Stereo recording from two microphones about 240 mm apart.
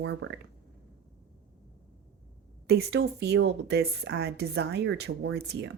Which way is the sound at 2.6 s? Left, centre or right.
Right.